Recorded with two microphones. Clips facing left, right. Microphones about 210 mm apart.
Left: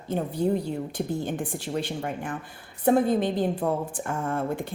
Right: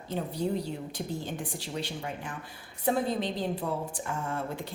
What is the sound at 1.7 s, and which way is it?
A woman's voice, 50° left (ahead or behind).